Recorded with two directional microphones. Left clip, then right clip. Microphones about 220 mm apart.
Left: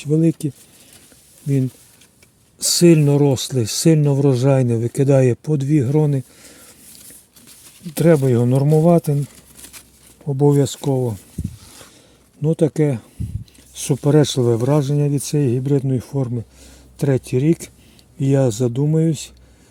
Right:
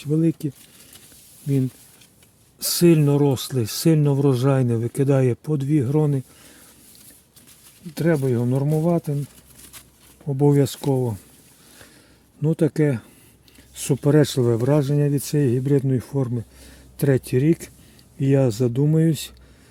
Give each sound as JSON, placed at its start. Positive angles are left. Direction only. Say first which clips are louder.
{"t": 0.0, "sound": "speech", "louder": "left 4 dB", "side_deg": 10}
{"t": 2.6, "sound": "speech", "louder": "left 4 dB", "side_deg": 15}
{"t": 7.9, "sound": "speech", "louder": "left 7 dB", "side_deg": 30}
{"t": 10.2, "sound": "speech", "louder": "left 3 dB", "side_deg": 0}
{"t": 12.4, "sound": "speech", "louder": "left 3 dB", "side_deg": 5}